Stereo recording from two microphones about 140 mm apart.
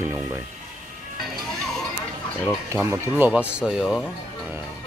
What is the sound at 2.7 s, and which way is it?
Speech, 15° right (ahead or behind).